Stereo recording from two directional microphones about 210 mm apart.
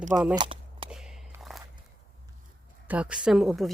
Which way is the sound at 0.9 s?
Centre (ahead or behind).